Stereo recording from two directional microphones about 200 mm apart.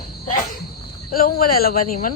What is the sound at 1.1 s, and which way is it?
Cricket, 45° left (ahead or behind).